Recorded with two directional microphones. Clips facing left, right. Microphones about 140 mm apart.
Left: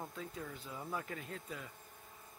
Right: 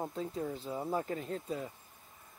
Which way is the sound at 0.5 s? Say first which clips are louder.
Right 8 dB; 30° right (ahead or behind).